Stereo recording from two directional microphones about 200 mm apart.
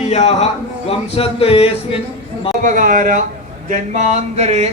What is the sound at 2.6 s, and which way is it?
A man's voice, 40° right (ahead or behind).